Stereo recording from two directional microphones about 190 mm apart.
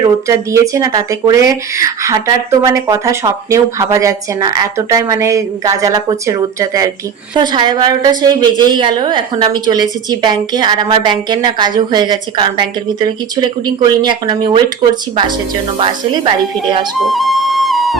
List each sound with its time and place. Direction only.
0.0 s a woman's voice: 15° right (ahead or behind)
15.8 s a woman's voice: 25° right (ahead or behind)
17.0 s music: centre (ahead or behind)